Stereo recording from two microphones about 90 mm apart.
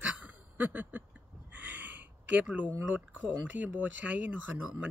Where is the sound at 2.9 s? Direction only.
20° right (ahead or behind).